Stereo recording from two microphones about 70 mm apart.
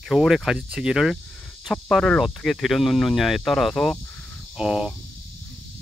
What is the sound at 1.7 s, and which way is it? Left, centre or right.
Speech, centre.